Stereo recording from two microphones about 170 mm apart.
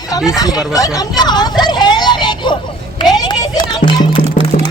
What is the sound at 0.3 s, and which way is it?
Speech, 20° left (ahead or behind).